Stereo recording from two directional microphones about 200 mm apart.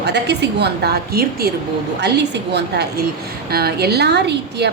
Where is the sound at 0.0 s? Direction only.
60° right (ahead or behind).